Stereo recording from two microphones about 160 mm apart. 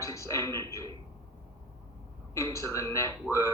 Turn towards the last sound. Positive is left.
turn(degrees=20)  # may be behind; listen again after turning